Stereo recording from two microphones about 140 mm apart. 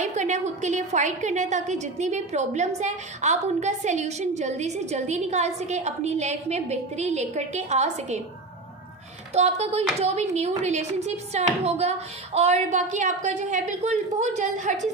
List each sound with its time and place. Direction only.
0.0 s a woman's voice: 60° right (ahead or behind)
9.3 s a woman's voice: 50° right (ahead or behind)